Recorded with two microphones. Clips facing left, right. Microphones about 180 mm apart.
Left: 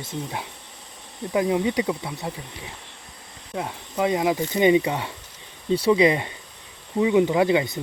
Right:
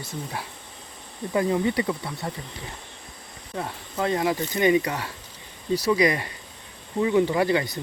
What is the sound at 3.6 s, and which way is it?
Speech, 15° left (ahead or behind).